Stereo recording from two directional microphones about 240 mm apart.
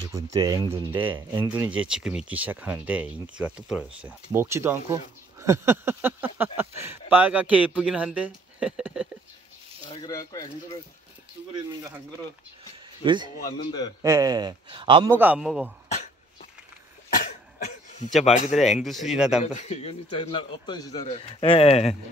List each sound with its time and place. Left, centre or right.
0.1 s speech: centre
10.0 s speech: centre
13.0 s speech: centre
15.1 s speech: centre
15.9 s a sound: left
17.2 s cough: left
18.2 s speech: left
18.6 s speech: centre
19.4 s a man's voice: left